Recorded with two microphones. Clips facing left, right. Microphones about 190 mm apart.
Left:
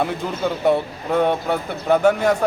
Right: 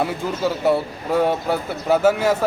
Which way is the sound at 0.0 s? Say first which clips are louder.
Even; 5° right (ahead or behind).